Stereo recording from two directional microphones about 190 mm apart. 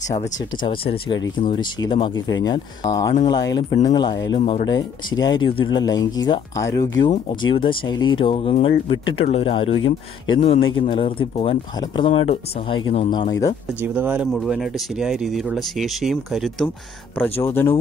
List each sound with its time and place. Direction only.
0.7 s speech: 25° left (ahead or behind)
13.3 s speech: 20° left (ahead or behind)
13.8 s speech: 10° right (ahead or behind); by 17.7 s 10° left (ahead or behind)